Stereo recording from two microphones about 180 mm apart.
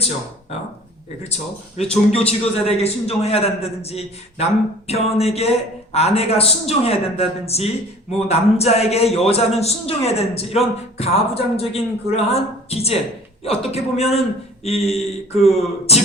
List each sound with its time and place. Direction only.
1.9 s a man's voice: 35° left (ahead or behind)